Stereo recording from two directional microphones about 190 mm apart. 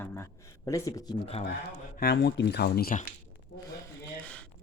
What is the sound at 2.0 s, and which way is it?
Speech, 60° left (ahead or behind).